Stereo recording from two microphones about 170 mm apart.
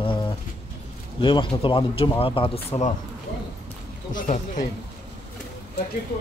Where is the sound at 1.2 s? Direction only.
30° left (ahead or behind).